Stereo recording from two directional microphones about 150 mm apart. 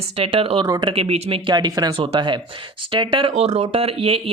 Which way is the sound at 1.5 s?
30° right (ahead or behind).